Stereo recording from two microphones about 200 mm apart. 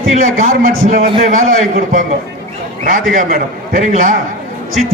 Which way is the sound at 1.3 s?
40° right (ahead or behind).